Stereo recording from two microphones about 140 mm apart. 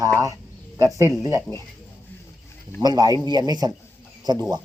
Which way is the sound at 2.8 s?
30° right (ahead or behind).